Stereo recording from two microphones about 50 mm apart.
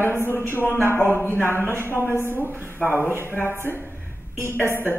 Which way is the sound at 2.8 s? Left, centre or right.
Left.